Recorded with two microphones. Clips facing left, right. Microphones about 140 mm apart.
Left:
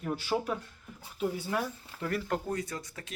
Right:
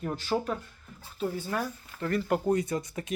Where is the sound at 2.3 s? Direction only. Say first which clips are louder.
Right 7 dB; 15° right (ahead or behind).